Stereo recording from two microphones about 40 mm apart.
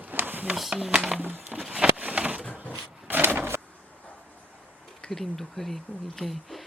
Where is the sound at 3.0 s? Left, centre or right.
Right.